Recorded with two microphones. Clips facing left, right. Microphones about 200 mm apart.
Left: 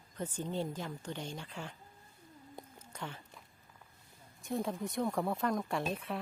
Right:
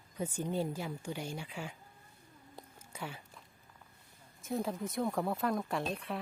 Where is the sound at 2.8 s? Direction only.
10° right (ahead or behind).